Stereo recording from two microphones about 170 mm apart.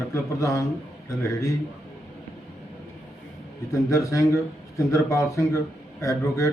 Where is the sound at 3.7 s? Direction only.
20° left (ahead or behind).